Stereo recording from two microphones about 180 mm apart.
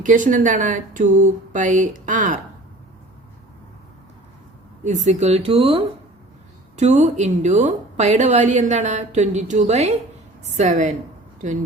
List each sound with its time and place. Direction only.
0.0 s speech: 45° right (ahead or behind)
4.8 s speech: 40° right (ahead or behind)